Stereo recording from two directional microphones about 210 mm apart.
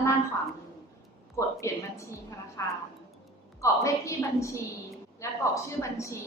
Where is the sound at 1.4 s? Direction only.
15° left (ahead or behind).